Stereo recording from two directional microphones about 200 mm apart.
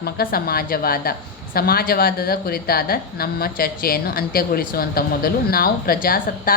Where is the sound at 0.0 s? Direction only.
50° left (ahead or behind).